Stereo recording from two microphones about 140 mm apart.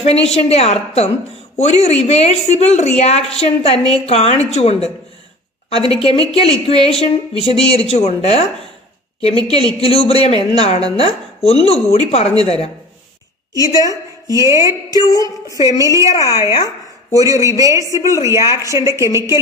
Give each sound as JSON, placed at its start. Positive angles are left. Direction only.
{"t": 0.0, "sound": "a woman's voice", "side_deg": 45}
{"t": 9.8, "sound": "speech", "side_deg": 45}
{"t": 13.5, "sound": "a woman's voice", "side_deg": 25}
{"t": 14.4, "sound": "speech", "side_deg": -20}
{"t": 15.0, "sound": "music", "side_deg": 25}
{"t": 15.5, "sound": "speech", "side_deg": -25}
{"t": 16.2, "sound": "music", "side_deg": 25}
{"t": 16.5, "sound": "chopping", "side_deg": 25}
{"t": 17.2, "sound": "speech", "side_deg": -25}